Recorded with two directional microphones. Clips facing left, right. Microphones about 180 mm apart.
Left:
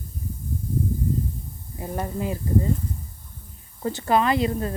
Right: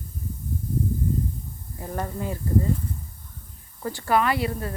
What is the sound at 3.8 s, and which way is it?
Speech, 20° left (ahead or behind).